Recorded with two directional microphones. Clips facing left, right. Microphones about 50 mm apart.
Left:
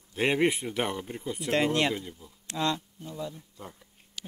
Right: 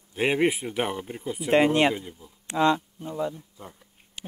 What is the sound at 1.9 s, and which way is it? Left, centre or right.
Speech, centre.